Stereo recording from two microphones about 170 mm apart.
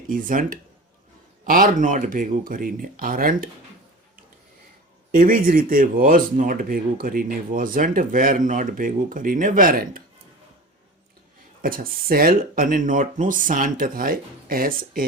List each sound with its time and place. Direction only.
0.1 s speech: 55° right (ahead or behind)
5.1 s speech: 55° right (ahead or behind)
11.6 s speech: 60° right (ahead or behind)